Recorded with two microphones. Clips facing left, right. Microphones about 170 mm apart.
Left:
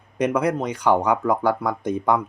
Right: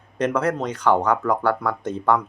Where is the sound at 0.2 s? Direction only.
10° left (ahead or behind).